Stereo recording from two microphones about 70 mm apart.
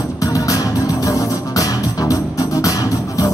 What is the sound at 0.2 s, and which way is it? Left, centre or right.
Music, left.